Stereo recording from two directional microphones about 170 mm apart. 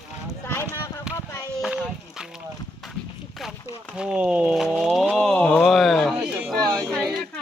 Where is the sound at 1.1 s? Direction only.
5° right (ahead or behind).